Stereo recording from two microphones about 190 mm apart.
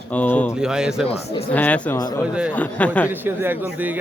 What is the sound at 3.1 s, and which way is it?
Speech, 10° right (ahead or behind).